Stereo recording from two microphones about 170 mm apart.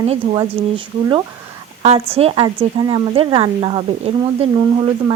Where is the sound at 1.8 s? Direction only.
35° right (ahead or behind).